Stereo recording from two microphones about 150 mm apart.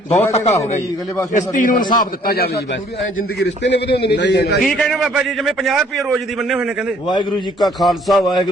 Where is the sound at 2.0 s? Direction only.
80° left.